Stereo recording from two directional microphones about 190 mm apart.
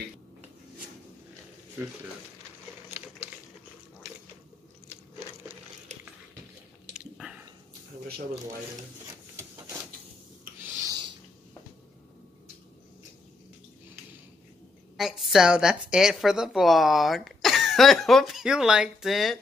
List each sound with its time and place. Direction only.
7.2 s squish: 5° right (ahead or behind)
9.4 s printer: 15° right (ahead or behind)
10.6 s owl: 15° right (ahead or behind)
15.0 s speech: centre (ahead or behind)